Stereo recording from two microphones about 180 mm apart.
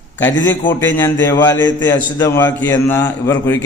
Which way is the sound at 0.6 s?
15° left (ahead or behind).